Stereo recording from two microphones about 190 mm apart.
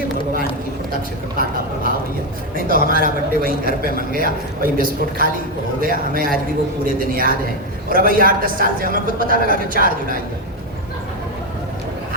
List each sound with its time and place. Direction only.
2.6 s a man's voice: 50° right (ahead or behind)